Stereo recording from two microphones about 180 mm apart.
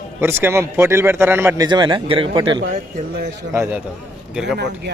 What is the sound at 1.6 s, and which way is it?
Speech, 25° right (ahead or behind).